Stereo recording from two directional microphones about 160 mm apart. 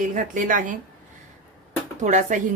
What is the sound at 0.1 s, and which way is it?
Speech, 55° right (ahead or behind).